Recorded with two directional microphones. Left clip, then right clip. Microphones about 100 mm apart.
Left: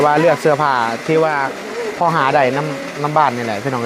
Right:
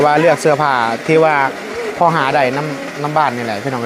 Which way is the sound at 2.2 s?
35° left (ahead or behind).